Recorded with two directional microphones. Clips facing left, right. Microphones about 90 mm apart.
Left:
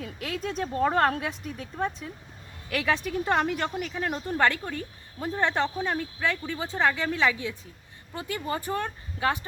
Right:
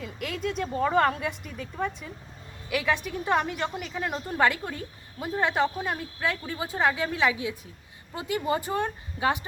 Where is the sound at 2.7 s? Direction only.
5° right (ahead or behind).